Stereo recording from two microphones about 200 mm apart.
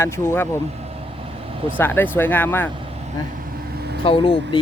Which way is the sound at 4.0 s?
25° left (ahead or behind).